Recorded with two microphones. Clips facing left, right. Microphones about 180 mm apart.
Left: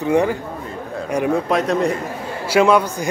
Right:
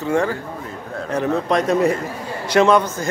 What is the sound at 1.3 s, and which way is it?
A man's voice, centre (ahead or behind).